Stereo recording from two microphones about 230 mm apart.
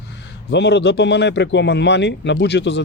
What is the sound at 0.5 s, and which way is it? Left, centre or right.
Speech, left.